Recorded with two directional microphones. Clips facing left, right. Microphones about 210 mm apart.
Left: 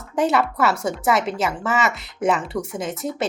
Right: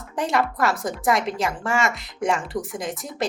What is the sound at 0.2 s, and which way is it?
A woman's voice, centre (ahead or behind).